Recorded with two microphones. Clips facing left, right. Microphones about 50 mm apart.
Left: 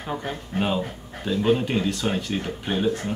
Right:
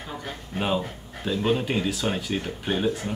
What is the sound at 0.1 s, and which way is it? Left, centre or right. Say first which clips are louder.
Speech: left 7 dB; centre.